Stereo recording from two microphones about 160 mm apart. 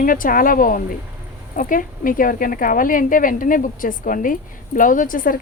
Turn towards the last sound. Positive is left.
turn(degrees=60)  # may be behind; listen again after turning